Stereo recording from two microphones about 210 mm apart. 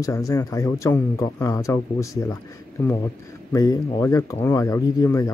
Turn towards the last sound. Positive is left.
turn(degrees=15)  # may be behind; listen again after turning